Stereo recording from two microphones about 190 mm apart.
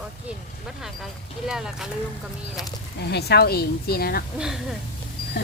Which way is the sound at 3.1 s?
60° left (ahead or behind).